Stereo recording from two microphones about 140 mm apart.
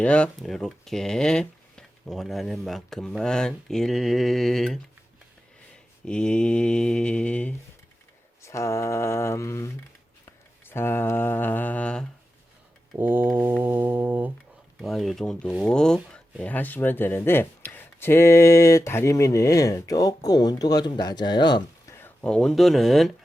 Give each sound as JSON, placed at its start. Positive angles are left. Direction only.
{"t": 0.0, "sound": "speech", "side_deg": 10}
{"t": 6.1, "sound": "mantra", "side_deg": 5}
{"t": 8.4, "sound": "speech", "side_deg": 20}
{"t": 10.2, "sound": "mantra", "side_deg": 15}
{"t": 13.0, "sound": "music", "side_deg": -15}
{"t": 14.8, "sound": "speech", "side_deg": 0}
{"t": 15.4, "sound": "music", "side_deg": -10}
{"t": 15.7, "sound": "speech", "side_deg": 5}
{"t": 21.9, "sound": "speech", "side_deg": 10}